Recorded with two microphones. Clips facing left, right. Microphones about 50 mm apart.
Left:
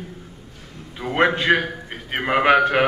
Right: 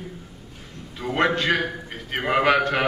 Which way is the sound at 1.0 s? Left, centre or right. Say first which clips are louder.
Left 3 dB; centre.